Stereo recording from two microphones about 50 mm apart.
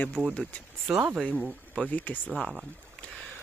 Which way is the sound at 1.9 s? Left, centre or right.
Left.